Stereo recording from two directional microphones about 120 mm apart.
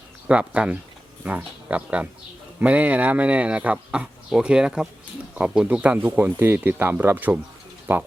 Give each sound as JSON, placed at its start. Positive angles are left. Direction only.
{"t": 0.3, "sound": "speech", "side_deg": -10}